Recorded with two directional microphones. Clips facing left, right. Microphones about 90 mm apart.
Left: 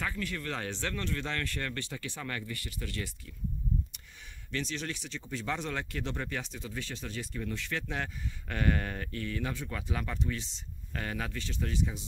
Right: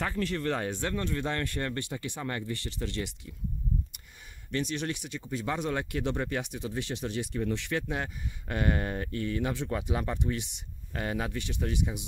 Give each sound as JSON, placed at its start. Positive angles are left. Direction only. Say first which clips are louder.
{"t": 0.0, "sound": "speech", "louder": "right 5 dB", "side_deg": -30}
{"t": 0.7, "sound": "speech", "louder": "right 4 dB", "side_deg": -15}
{"t": 2.2, "sound": "speech", "louder": "right 4 dB", "side_deg": -30}
{"t": 4.5, "sound": "speech", "louder": "right 4 dB", "side_deg": -20}
{"t": 5.0, "sound": "speech", "louder": "right 3 dB", "side_deg": -10}
{"t": 5.7, "sound": "speech", "louder": "right 5 dB", "side_deg": -20}